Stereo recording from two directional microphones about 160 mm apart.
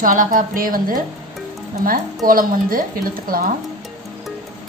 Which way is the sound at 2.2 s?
60° right (ahead or behind).